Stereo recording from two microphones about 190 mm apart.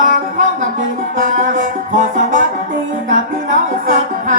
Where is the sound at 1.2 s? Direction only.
45° right (ahead or behind).